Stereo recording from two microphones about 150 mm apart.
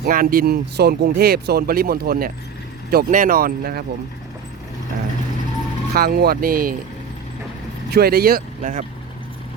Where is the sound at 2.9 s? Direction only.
70° right (ahead or behind); by 3.8 s 85° right.